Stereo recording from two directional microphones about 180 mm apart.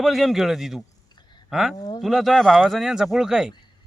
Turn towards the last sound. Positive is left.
turn(degrees=-5)  # may be behind; listen again after turning